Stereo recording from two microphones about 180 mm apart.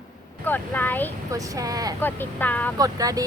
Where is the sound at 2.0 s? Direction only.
10° left (ahead or behind).